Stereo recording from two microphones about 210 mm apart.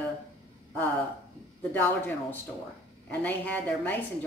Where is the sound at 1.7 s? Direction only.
10° left (ahead or behind).